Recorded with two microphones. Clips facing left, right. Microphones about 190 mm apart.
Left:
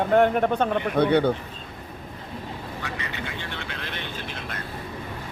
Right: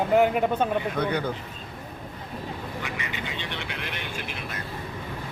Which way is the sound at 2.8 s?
15° right (ahead or behind).